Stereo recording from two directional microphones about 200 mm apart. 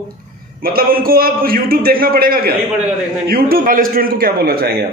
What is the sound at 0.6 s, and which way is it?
A man's voice, 45° right (ahead or behind).